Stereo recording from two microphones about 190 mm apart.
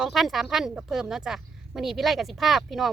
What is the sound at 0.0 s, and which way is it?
A woman's voice, centre (ahead or behind).